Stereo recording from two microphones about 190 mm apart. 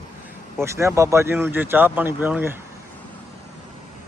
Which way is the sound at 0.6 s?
15° right (ahead or behind).